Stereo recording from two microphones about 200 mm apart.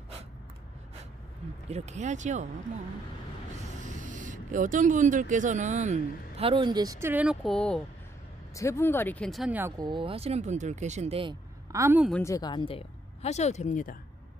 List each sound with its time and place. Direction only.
1.7 s speech: 35° right (ahead or behind)
3.8 s speech: 40° right (ahead or behind); by 7.8 s 5° left (ahead or behind)
8.5 s speech: 15° left (ahead or behind); by 11.3 s 30° right (ahead or behind)
11.7 s a woman's voice: 10° right (ahead or behind)
12.1 s speech: 15° left (ahead or behind); by 13.9 s 40° left (ahead or behind)